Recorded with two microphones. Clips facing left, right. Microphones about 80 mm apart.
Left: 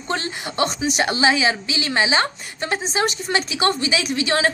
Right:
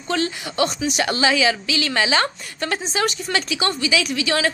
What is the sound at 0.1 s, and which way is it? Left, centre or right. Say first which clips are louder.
A woman's voice: right 2 dB; left.